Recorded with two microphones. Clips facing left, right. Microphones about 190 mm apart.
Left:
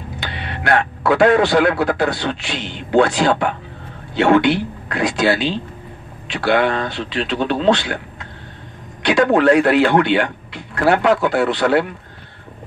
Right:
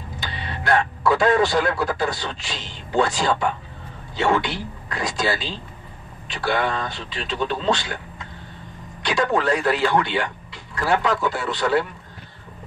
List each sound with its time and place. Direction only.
0.2 s a man's voice: 70° left (ahead or behind)
9.0 s speech: 65° left (ahead or behind)